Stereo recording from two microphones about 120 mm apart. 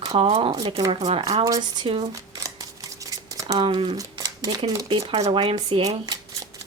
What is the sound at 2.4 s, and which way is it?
Scissors, 30° right (ahead or behind).